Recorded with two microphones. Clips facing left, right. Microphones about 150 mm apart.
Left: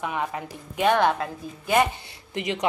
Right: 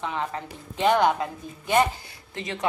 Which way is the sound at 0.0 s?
10° left (ahead or behind).